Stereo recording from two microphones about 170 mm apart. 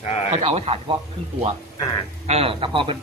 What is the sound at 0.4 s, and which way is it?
Speech, 35° right (ahead or behind).